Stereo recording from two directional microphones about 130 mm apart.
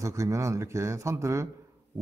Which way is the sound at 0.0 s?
25° right (ahead or behind).